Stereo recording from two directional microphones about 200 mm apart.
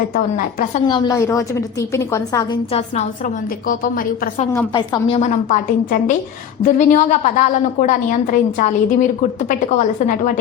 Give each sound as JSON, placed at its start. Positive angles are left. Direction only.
{"t": 0.1, "sound": "a woman's voice", "side_deg": 40}
{"t": 0.9, "sound": "a woman's voice", "side_deg": 20}
{"t": 3.7, "sound": "a woman's voice", "side_deg": 45}
{"t": 4.5, "sound": "a woman's voice", "side_deg": 20}
{"t": 5.5, "sound": "a woman's voice", "side_deg": 40}